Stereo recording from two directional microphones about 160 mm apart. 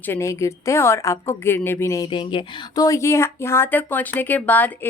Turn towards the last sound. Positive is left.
turn(degrees=10)  # may be behind; listen again after turning